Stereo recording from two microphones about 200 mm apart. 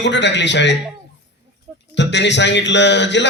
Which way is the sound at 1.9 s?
60° left (ahead or behind).